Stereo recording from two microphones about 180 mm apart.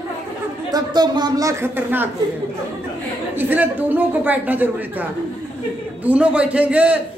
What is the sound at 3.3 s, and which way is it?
A man's voice, 10° right (ahead or behind).